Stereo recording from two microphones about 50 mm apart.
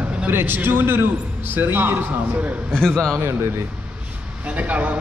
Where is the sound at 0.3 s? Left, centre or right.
Right.